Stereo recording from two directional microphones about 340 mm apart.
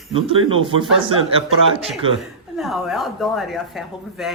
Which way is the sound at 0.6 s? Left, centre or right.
Centre.